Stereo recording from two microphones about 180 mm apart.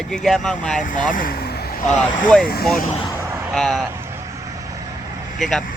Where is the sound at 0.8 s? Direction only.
45° left (ahead or behind).